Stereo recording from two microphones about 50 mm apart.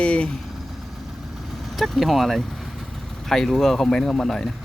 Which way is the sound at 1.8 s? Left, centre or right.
Centre.